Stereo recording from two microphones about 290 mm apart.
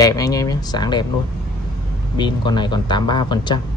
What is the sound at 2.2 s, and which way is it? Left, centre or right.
Speech, centre.